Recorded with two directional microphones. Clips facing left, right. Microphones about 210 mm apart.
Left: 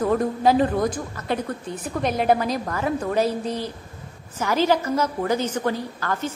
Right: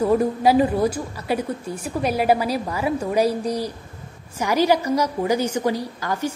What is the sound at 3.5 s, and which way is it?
Speech, 40° right (ahead or behind).